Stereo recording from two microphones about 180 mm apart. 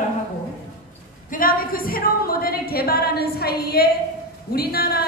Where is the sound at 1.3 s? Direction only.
50° left (ahead or behind).